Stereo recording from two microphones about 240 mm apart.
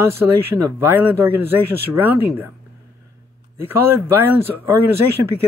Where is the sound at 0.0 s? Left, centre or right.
Centre.